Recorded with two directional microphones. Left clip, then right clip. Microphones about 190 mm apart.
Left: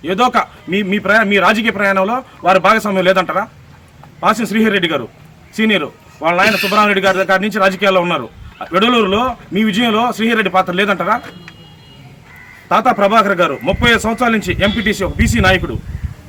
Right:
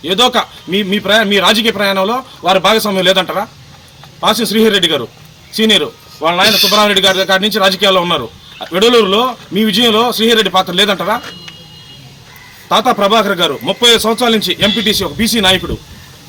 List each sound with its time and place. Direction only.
0.0 s a man's voice: centre (ahead or behind)
6.4 s a man's voice: 15° left (ahead or behind)
6.7 s a man's voice: centre (ahead or behind)
12.6 s a man's voice: 5° left (ahead or behind)